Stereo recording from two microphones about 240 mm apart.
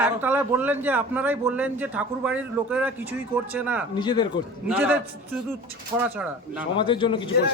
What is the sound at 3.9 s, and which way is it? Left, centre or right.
Speech, centre.